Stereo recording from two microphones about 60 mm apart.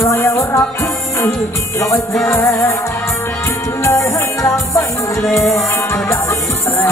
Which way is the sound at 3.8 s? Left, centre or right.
Left.